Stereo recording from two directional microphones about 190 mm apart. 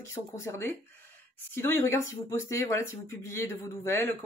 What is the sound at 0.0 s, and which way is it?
Speech, 15° left (ahead or behind).